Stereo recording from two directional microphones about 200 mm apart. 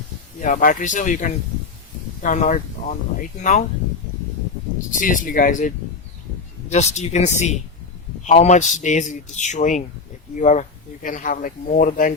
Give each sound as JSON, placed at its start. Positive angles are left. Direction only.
{"t": 0.3, "sound": "speech", "side_deg": 40}
{"t": 4.9, "sound": "speech", "side_deg": 40}